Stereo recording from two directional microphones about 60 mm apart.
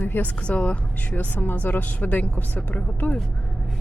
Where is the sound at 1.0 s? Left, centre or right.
Left.